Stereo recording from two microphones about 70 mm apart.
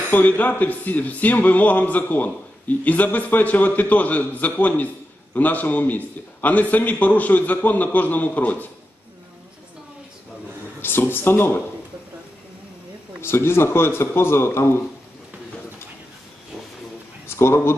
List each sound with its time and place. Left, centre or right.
0.1 s a man's voice: left
10.8 s speech: left
13.2 s a man's voice: left
17.4 s a man's voice: left